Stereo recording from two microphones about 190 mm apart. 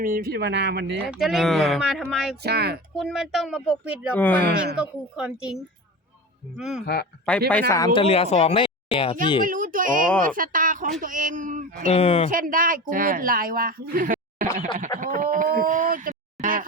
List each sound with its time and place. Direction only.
0.0 s speech: 50° right (ahead or behind)
1.2 s speech: centre (ahead or behind)
2.4 s speech: 60° right (ahead or behind)
2.9 s speech: centre (ahead or behind)
4.1 s speech: 10° left (ahead or behind)
4.8 s speech: 5° right (ahead or behind)
6.6 s speech: centre (ahead or behind)
6.8 s speech: 55° left (ahead or behind)
7.3 s speech: 5° left (ahead or behind)
7.7 s speech: 20° left (ahead or behind)
8.0 s speech: 35° left (ahead or behind)
9.4 s speech: 45° right (ahead or behind)
11.9 s speech: 30° left (ahead or behind)
12.3 s speech: 45° right (ahead or behind)